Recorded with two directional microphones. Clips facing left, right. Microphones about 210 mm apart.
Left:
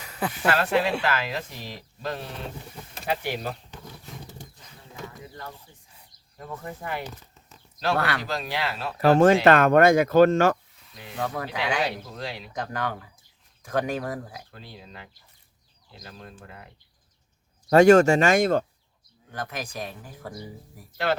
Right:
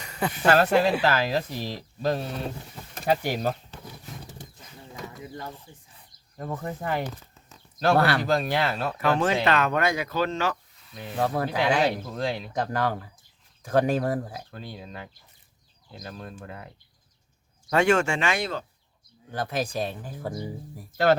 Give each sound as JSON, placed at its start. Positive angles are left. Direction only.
{"t": 0.0, "sound": "a sound", "side_deg": 0}
{"t": 0.4, "sound": "speech", "side_deg": -40}
{"t": 6.3, "sound": "speech", "side_deg": -40}
{"t": 8.3, "sound": "speech", "side_deg": -45}
{"t": 9.0, "sound": "speech", "side_deg": 40}
{"t": 11.2, "sound": "speech", "side_deg": -40}
{"t": 14.5, "sound": "speech", "side_deg": -45}
{"t": 17.7, "sound": "speech", "side_deg": 40}
{"t": 19.3, "sound": "speech", "side_deg": -30}